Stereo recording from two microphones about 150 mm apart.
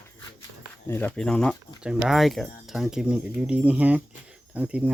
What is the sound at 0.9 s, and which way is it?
Speech, 10° left (ahead or behind).